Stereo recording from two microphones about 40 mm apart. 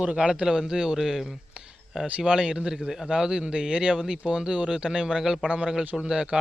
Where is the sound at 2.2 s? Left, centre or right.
Right.